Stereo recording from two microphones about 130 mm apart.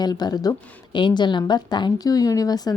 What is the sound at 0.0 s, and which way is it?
Speech, 30° left (ahead or behind).